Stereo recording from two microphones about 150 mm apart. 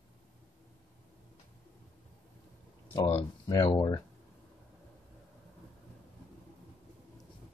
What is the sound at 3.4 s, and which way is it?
Speech, 25° left (ahead or behind).